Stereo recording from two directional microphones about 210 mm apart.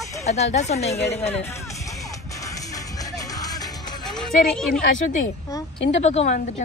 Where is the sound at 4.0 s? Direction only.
Centre (ahead or behind).